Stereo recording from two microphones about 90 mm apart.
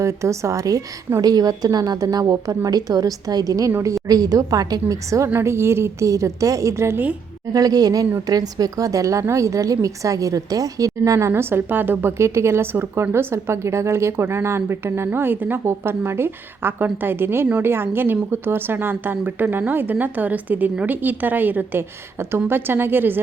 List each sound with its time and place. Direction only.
0.0 s a woman's voice: 35° right (ahead or behind)
7.5 s a woman's voice: 45° right (ahead or behind); by 23.1 s 25° right (ahead or behind)